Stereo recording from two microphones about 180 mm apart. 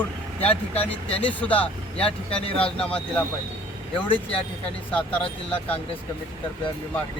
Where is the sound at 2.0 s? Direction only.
30° left (ahead or behind).